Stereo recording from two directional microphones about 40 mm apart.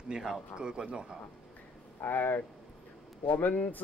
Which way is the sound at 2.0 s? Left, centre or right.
Left.